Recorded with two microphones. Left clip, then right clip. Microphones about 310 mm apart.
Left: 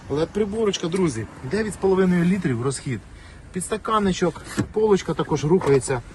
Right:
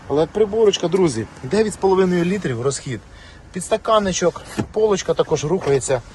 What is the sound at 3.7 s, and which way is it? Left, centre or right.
Speech, centre.